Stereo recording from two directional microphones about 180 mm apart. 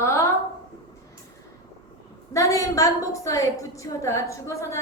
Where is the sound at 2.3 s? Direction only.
15° left (ahead or behind).